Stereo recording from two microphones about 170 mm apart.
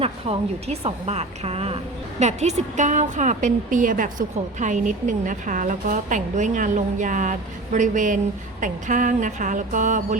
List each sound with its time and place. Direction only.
0.0 s a woman's voice: 35° right (ahead or behind)